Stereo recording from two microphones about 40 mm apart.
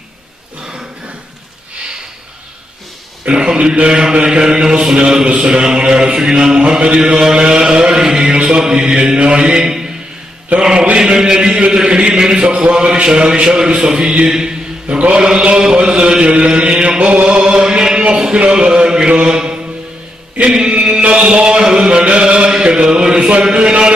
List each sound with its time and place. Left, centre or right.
3.3 s a man's voice: right
8.0 s music: centre
8.4 s a man's voice: centre
14.2 s mantra: centre
15.1 s a man's voice: right
17.0 s chant: right
18.4 s mantra: right
20.5 s chant: right